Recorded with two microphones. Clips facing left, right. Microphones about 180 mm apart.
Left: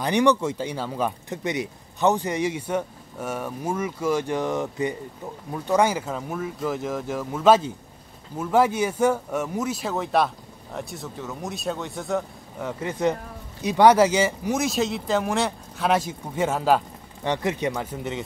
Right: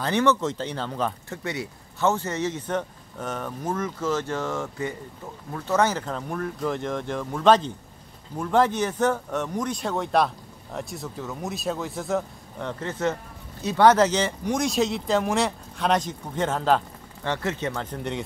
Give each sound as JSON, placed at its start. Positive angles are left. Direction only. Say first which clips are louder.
{"t": 0.0, "sound": "speech", "louder": "left 2 dB", "side_deg": 15}